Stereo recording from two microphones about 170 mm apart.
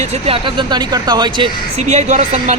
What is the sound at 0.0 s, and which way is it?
Speech, 35° right (ahead or behind).